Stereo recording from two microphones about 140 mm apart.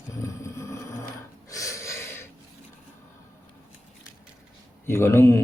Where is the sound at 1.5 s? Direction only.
25° left (ahead or behind).